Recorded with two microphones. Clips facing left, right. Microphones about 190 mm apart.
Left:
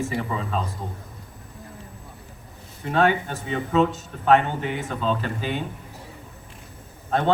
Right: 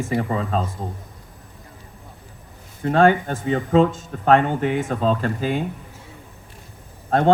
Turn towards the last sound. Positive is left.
turn(degrees=-45)  # may be behind; listen again after turning